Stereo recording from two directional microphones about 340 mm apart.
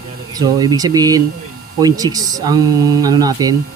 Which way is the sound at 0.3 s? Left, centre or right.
Centre.